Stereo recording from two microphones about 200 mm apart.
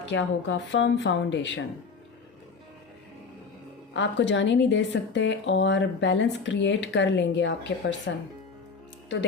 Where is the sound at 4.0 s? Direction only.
65° left (ahead or behind).